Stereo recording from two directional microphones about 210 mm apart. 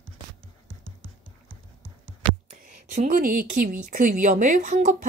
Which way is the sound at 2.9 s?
35° right (ahead or behind).